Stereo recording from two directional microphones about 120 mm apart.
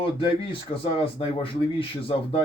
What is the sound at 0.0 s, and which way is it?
Speech, 40° left (ahead or behind).